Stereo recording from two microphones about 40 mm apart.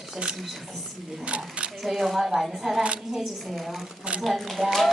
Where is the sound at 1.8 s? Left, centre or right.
Centre.